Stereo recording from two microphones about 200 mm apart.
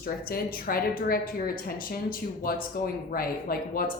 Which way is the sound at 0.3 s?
50° left (ahead or behind).